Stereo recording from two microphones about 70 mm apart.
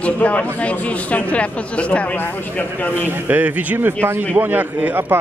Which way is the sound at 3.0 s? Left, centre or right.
Right.